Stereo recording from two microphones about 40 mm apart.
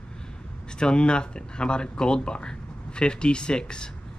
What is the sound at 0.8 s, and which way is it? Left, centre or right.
Speech, left.